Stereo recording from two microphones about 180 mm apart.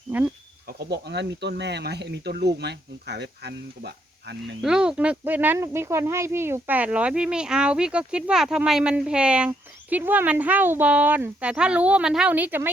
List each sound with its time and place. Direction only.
0.1 s speech: 10° right (ahead or behind)
0.7 s speech: 65° right (ahead or behind)
4.6 s speech: 5° right (ahead or behind)